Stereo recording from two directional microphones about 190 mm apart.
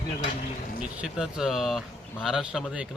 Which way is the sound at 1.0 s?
Centre (ahead or behind).